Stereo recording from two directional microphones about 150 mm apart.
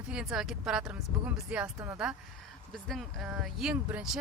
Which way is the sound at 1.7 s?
20° right (ahead or behind).